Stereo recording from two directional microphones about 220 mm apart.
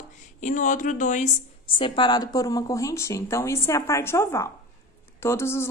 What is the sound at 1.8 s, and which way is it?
Speech, 20° left (ahead or behind).